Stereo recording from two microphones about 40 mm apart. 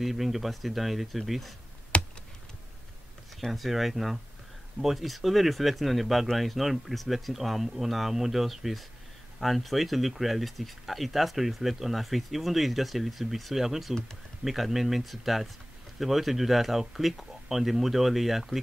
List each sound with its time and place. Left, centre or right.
0.0 s speech: centre
1.9 s computer keyboard: left
3.4 s speech: centre